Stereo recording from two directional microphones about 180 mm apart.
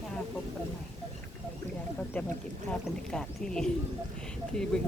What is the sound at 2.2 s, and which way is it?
Speech, 10° left (ahead or behind).